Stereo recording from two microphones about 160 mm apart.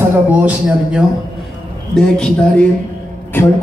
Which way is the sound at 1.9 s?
5° left (ahead or behind).